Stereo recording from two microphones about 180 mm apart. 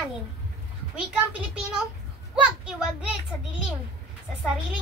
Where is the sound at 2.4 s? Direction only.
5° right (ahead or behind).